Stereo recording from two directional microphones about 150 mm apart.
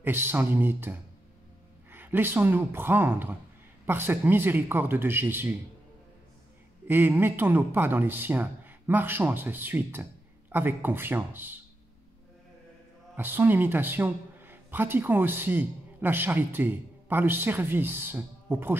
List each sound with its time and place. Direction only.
0.0 s a man's voice: 15° right (ahead or behind)
6.9 s a man's voice: 15° right (ahead or behind)
13.1 s a man's voice: 15° right (ahead or behind)